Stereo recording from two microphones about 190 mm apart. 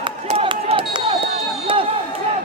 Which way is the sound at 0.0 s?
30° right (ahead or behind).